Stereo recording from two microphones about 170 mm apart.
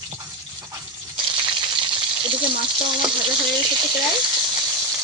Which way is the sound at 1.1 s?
30° right (ahead or behind).